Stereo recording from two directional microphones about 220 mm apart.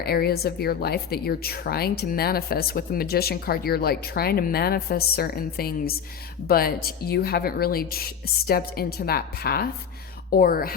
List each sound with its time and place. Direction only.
0.0 s a woman's voice: 45° left (ahead or behind)